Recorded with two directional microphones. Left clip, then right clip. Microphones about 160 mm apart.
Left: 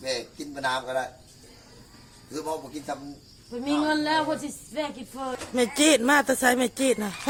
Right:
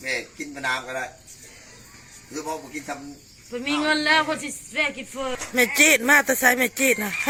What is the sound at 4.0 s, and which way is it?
Speech, 60° left (ahead or behind).